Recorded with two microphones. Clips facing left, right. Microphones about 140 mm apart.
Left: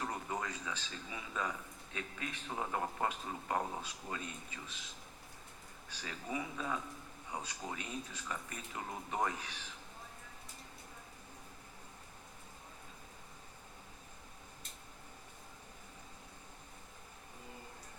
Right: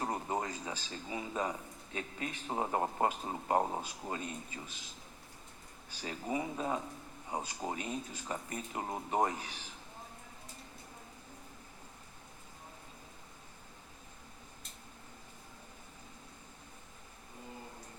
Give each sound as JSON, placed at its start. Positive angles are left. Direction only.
{"t": 0.0, "sound": "speech", "side_deg": -30}
{"t": 5.9, "sound": "speech", "side_deg": -30}